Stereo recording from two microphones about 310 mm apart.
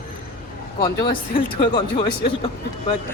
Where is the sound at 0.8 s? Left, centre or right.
Centre.